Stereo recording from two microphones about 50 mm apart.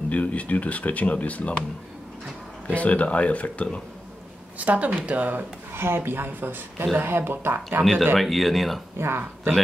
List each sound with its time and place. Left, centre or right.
0.1 s speech: left
2.7 s speech: left
4.6 s speech: right
5.7 s speech: right
7.8 s speech: centre
8.9 s speech: right